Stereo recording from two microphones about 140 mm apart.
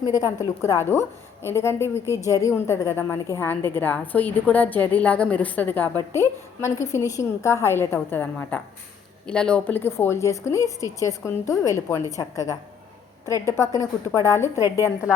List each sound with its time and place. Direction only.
0.0 s a woman's voice: 25° left (ahead or behind)
6.7 s a woman's voice: 55° left (ahead or behind)
6.9 s a woman's voice: 20° left (ahead or behind)
13.6 s speech: 20° left (ahead or behind)